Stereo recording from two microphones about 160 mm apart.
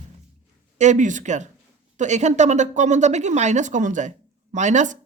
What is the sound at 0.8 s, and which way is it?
Speech, 50° right (ahead or behind).